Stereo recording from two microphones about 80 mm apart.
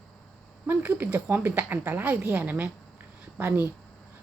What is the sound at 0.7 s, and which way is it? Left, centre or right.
Speech, right.